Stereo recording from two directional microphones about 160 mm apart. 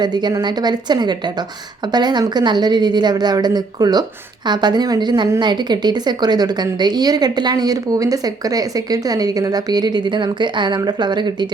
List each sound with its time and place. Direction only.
0.0 s a woman's voice: 25° right (ahead or behind)